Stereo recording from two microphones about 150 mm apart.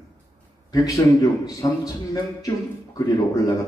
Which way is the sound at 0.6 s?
20° left (ahead or behind).